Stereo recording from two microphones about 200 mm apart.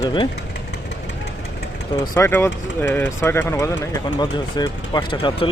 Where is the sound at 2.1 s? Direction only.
15° left (ahead or behind).